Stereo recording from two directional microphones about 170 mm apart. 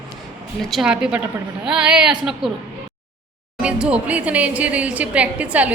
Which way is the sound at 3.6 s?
5° right (ahead or behind).